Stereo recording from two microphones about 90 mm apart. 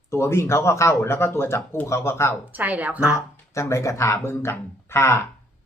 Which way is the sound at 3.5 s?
30° left (ahead or behind).